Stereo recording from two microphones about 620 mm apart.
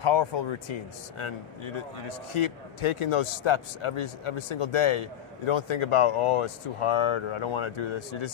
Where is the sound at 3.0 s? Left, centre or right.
Left.